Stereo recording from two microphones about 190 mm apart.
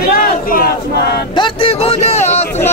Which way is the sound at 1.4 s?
30° left (ahead or behind).